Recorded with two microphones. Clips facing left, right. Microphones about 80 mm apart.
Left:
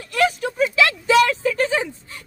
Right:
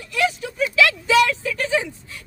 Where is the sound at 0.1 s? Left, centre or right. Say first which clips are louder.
Left 3 dB; left.